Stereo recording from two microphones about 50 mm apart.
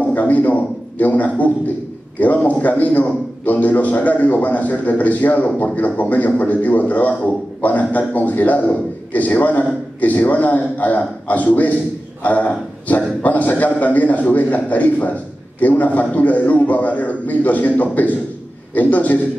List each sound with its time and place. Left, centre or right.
0.1 s a man's voice: left